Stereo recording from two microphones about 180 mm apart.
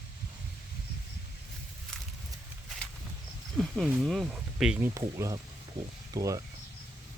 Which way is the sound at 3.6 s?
Centre (ahead or behind).